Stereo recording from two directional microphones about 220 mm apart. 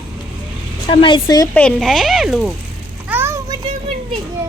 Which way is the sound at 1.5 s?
Centre (ahead or behind).